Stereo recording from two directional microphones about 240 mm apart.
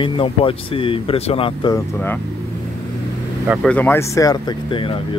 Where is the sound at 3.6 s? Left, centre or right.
Centre.